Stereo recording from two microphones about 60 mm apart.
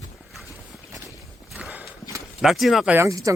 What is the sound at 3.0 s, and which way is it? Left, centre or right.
Speech, right.